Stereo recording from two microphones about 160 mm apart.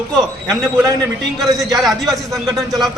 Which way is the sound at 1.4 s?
20° right (ahead or behind).